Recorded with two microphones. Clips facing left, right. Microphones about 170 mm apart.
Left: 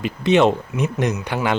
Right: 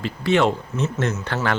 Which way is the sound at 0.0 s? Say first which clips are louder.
Left 3 dB; 20° left (ahead or behind).